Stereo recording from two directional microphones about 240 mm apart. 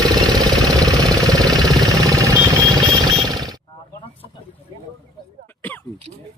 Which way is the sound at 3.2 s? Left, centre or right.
Centre.